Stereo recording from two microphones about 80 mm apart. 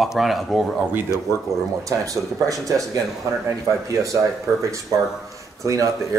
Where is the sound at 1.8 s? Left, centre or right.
Right.